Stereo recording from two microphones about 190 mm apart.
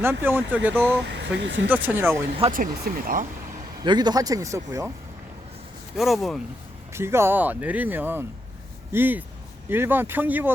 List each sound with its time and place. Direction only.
0.0 s speech: 10° right (ahead or behind)
1.2 s speech: 65° right (ahead or behind)
1.7 s speech: 10° right (ahead or behind)
2.5 s speech: 45° right (ahead or behind)
3.8 s speech: 20° right (ahead or behind)
6.0 s speech: centre (ahead or behind)
6.9 s speech: 15° right (ahead or behind)